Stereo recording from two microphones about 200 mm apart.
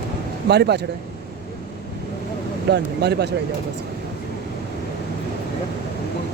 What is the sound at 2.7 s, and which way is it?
Speech, 55° right (ahead or behind).